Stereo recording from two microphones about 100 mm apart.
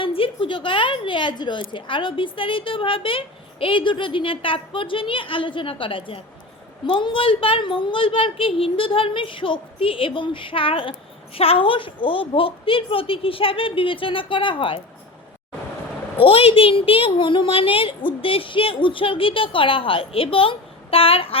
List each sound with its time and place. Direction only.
0.0 s a woman's voice: 60° left (ahead or behind)
16.2 s a woman's voice: 70° left (ahead or behind)